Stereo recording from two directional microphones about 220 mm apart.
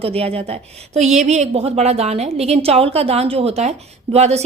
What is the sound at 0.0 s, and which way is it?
A woman's voice, 25° right (ahead or behind).